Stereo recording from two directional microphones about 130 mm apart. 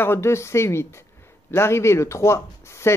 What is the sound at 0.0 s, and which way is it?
Speech, 20° left (ahead or behind).